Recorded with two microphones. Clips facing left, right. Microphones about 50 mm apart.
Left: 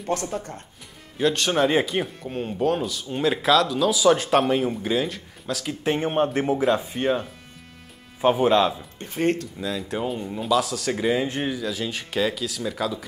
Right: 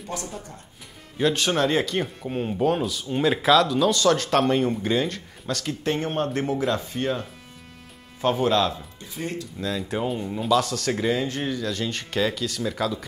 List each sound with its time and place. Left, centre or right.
0.0 s speech: left
1.1 s speech: centre
1.6 s speech: centre
2.1 s speech: centre
5.9 s speech: centre
9.0 s speech: left
9.6 s speech: centre
11.6 s speech: centre